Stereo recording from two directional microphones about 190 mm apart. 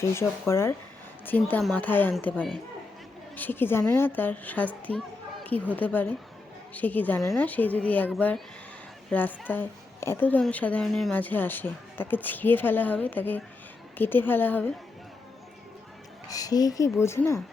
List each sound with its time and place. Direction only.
0.0 s a child's voice: 15° left (ahead or behind)
16.3 s a child's voice: 20° left (ahead or behind)